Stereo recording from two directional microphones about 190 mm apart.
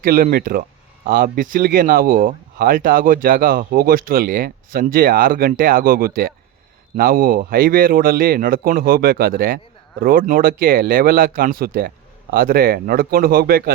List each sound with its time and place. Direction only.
0.0 s speech: 50° right (ahead or behind)